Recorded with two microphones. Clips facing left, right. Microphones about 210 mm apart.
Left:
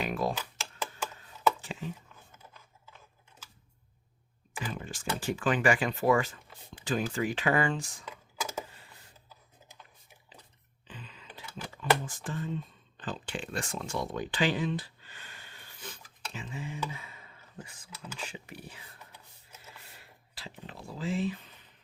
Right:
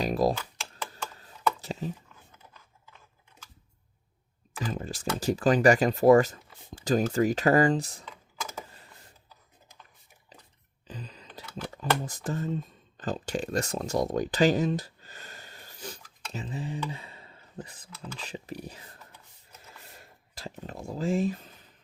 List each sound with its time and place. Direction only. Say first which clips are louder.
0.0 s computer keyboard: right 6 dB; 35° right (ahead or behind)
1.6 s speech: right 5 dB; 35° right (ahead or behind)
4.6 s speech: right 5 dB; 35° right (ahead or behind)
10.8 s a sound: right 5 dB; 40° right (ahead or behind)
12.0 s speech: right 5 dB; 40° right (ahead or behind)
20.0 s a sound: right 11 dB; 45° right (ahead or behind)